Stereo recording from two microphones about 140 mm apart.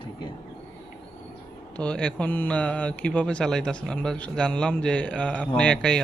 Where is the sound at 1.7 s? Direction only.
5° left (ahead or behind).